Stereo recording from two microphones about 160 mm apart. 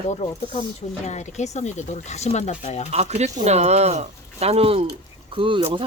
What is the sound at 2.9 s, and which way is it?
Speech, 45° right (ahead or behind).